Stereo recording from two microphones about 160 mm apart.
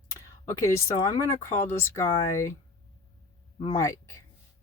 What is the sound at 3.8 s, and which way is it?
Speech, 20° left (ahead or behind).